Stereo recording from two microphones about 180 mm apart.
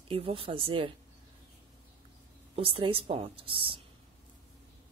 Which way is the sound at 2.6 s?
30° right (ahead or behind).